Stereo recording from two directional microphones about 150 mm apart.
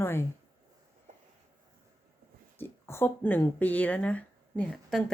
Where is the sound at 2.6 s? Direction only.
15° left (ahead or behind).